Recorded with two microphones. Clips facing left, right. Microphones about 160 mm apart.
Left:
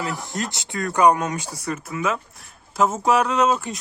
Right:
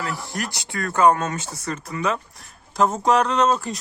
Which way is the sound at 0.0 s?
20° left (ahead or behind).